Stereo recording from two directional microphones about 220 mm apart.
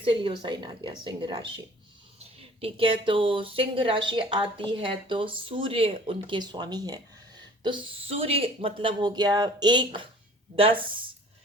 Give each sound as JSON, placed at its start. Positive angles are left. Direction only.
{"t": 0.0, "sound": "speech", "side_deg": -25}